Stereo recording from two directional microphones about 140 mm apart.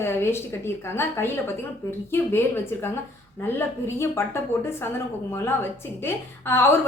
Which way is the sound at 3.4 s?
20° left (ahead or behind).